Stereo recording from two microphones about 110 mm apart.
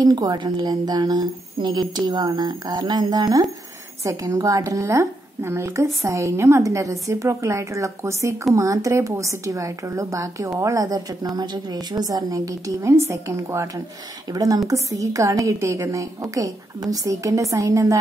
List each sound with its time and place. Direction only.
0.0 s a woman's voice: 35° right (ahead or behind)